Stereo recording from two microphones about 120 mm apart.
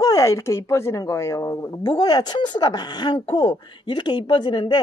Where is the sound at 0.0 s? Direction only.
30° left (ahead or behind).